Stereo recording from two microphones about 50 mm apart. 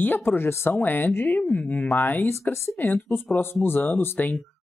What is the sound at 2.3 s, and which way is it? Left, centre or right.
Speech, left.